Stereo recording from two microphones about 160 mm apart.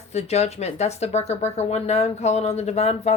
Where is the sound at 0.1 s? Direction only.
40° left (ahead or behind).